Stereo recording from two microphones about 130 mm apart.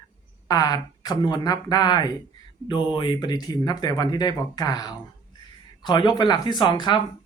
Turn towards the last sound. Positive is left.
turn(degrees=35)  # may be behind; listen again after turning